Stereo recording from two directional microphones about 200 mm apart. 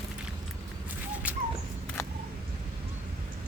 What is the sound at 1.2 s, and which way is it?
Dog, 5° right (ahead or behind).